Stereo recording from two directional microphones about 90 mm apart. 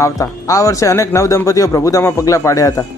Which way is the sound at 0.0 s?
35° left (ahead or behind).